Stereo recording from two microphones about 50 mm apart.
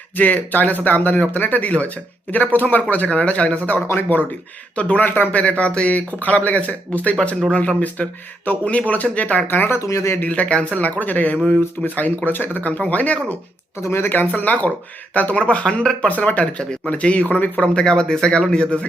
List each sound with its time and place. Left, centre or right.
0.2 s speech: left
4.1 s speech: left
4.7 s speech: left
5.4 s speech: left
9.6 s speech: left
10.2 s speech: left
13.8 s speech: left
14.1 s speech: left; by 18.6 s centre